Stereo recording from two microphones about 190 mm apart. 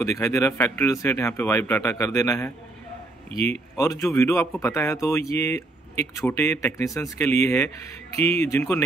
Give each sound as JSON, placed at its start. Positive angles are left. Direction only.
{"t": 0.0, "sound": "speech", "side_deg": 15}
{"t": 3.3, "sound": "a man's voice", "side_deg": -35}
{"t": 3.7, "sound": "speech", "side_deg": 15}